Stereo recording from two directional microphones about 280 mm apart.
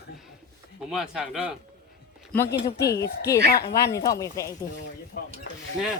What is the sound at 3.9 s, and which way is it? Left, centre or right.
Speech, centre.